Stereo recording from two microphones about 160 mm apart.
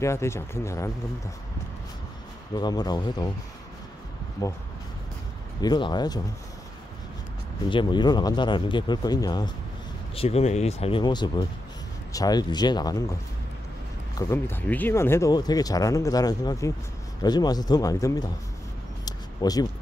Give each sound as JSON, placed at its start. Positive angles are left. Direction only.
{"t": 0.0, "sound": "speech", "side_deg": 15}
{"t": 2.5, "sound": "speech", "side_deg": 25}
{"t": 4.4, "sound": "speech", "side_deg": 20}
{"t": 5.6, "sound": "speech", "side_deg": 25}
{"t": 7.7, "sound": "speech", "side_deg": 30}
{"t": 10.1, "sound": "speech", "side_deg": 40}
{"t": 14.1, "sound": "speech", "side_deg": 15}
{"t": 19.0, "sound": "a sound", "side_deg": 25}